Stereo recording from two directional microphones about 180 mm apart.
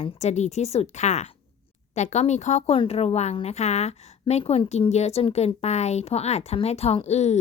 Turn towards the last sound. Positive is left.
turn(degrees=40)  # may be behind; listen again after turning